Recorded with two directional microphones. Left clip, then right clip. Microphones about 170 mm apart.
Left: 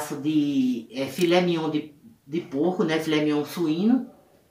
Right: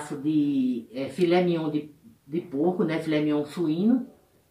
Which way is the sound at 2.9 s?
5° left (ahead or behind).